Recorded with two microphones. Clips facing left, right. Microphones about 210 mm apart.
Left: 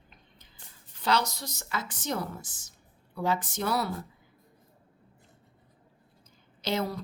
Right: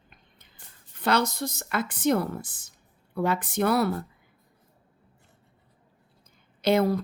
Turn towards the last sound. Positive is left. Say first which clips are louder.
# right 9 dB
turn(degrees=-60)  # may be behind; listen again after turning